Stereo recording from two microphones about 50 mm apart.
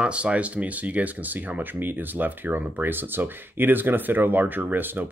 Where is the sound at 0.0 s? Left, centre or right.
Right.